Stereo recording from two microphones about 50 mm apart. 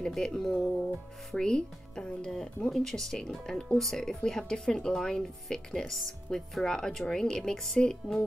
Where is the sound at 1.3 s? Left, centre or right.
Centre.